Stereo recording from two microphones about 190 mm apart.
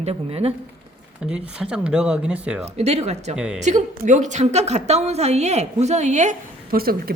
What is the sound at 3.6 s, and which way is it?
A woman's voice, 40° right (ahead or behind).